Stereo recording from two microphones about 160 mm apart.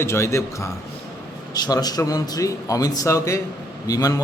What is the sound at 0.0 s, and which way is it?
A man's voice, 20° left (ahead or behind).